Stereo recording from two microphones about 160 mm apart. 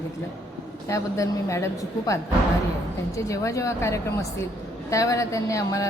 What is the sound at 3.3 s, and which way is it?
A woman's voice, 20° left (ahead or behind).